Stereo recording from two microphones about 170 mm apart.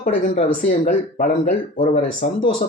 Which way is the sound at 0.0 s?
55° left (ahead or behind).